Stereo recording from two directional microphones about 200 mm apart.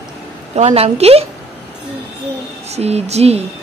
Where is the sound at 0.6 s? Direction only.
30° right (ahead or behind).